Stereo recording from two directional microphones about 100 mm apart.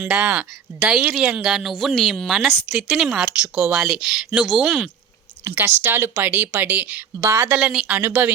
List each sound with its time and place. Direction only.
0.0 s a woman's voice: 10° right (ahead or behind)
5.5 s speech: 20° right (ahead or behind)